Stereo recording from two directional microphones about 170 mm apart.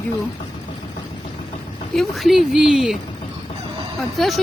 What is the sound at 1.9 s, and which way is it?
Speech, centre (ahead or behind).